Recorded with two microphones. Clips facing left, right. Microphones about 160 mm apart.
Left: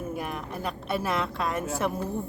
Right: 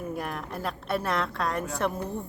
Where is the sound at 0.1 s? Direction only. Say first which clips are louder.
Even; centre (ahead or behind).